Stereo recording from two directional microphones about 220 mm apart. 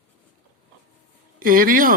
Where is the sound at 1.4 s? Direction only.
40° right (ahead or behind).